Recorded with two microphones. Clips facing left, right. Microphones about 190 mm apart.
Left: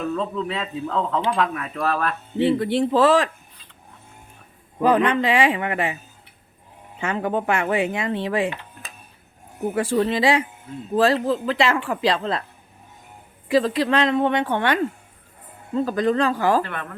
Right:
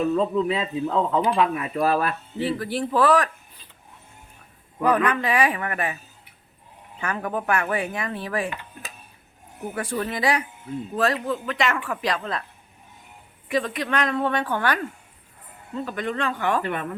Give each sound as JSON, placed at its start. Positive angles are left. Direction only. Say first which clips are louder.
{"t": 0.1, "sound": "speech", "louder": "right 4 dB", "side_deg": -5}
{"t": 2.4, "sound": "speech", "louder": "left 7 dB", "side_deg": 25}
{"t": 4.8, "sound": "speech", "louder": "left 3 dB", "side_deg": 25}
{"t": 7.0, "sound": "speech", "louder": "left 4 dB", "side_deg": 25}
{"t": 9.7, "sound": "speech", "louder": "left 7 dB", "side_deg": 30}
{"t": 13.5, "sound": "speech", "louder": "left 6 dB", "side_deg": 30}
{"t": 15.7, "sound": "speech", "louder": "left 8 dB", "side_deg": 35}
{"t": 16.6, "sound": "speech", "louder": "right 5 dB", "side_deg": -15}